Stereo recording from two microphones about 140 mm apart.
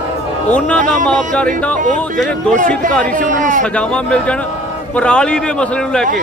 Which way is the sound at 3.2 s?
65° right (ahead or behind).